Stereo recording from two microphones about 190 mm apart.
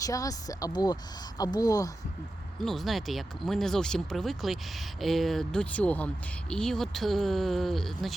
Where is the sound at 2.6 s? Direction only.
Centre (ahead or behind).